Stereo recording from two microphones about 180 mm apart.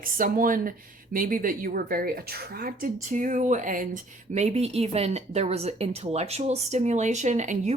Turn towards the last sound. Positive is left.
turn(degrees=-40)  # may be behind; listen again after turning